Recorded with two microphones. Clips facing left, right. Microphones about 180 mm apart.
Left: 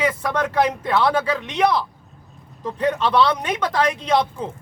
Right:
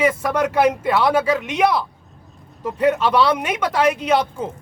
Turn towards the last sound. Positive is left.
turn(degrees=-5)  # may be behind; listen again after turning